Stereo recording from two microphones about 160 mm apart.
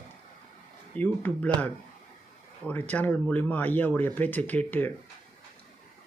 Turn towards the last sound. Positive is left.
turn(degrees=10)  # may be behind; listen again after turning